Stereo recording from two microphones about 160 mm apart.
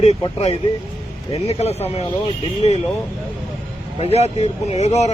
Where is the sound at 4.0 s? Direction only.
40° left (ahead or behind).